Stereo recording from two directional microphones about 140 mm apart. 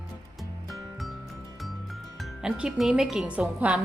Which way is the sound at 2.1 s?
5° right (ahead or behind).